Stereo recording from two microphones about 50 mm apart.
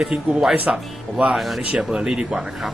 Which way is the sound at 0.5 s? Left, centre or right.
Right.